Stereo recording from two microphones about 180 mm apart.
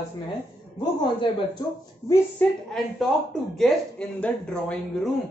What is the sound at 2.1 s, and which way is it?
Speech, 15° left (ahead or behind).